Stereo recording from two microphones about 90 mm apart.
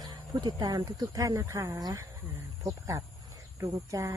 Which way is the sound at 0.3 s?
45° right (ahead or behind).